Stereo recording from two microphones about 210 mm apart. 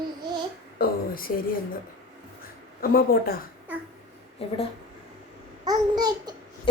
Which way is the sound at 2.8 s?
45° left (ahead or behind).